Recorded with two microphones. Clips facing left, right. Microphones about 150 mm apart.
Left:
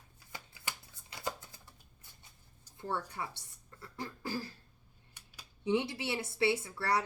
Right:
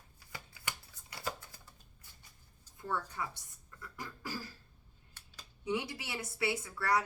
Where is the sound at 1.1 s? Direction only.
20° left (ahead or behind).